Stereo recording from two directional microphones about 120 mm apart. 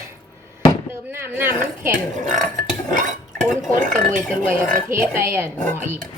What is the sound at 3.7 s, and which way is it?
Speech, 90° right.